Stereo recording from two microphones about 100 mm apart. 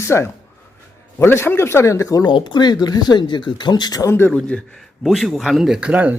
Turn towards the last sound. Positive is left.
turn(degrees=-15)  # may be behind; listen again after turning